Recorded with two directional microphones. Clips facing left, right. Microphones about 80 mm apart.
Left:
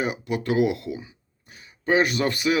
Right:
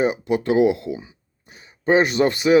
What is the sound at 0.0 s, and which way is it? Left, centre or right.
Speech, right.